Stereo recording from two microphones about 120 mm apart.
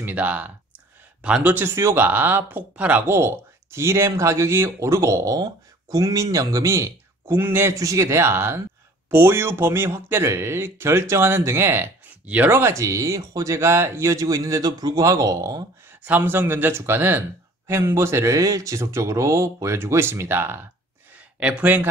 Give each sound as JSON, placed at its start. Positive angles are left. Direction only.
{"t": 0.0, "sound": "speech", "side_deg": -15}
{"t": 15.9, "sound": "speech", "side_deg": -15}